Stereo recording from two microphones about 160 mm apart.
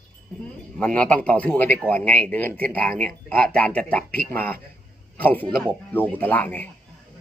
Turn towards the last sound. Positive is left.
turn(degrees=10)  # may be behind; listen again after turning